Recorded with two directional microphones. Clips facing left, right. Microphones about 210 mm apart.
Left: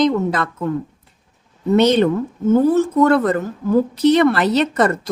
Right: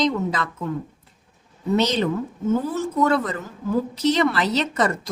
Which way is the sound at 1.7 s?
55° left (ahead or behind).